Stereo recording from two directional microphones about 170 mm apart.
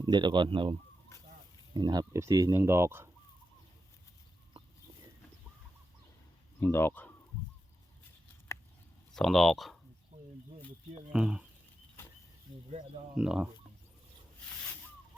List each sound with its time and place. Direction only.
0.0 s speech: 25° right (ahead or behind)
6.6 s speech: 15° left (ahead or behind)
9.1 s speech: centre (ahead or behind)
11.1 s speech: 5° right (ahead or behind)
13.1 s speech: 5° right (ahead or behind)